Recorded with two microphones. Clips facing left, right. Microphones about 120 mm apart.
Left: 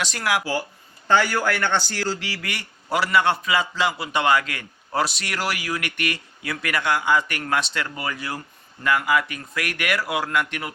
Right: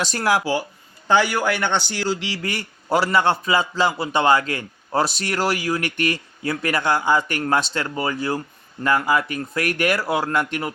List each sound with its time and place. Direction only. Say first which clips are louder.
0.0 s a man's voice: right 4 dB; 35° right (ahead or behind)
1.0 s a man's voice: right 2 dB; 15° right (ahead or behind); by 10.7 s 35° right (ahead or behind)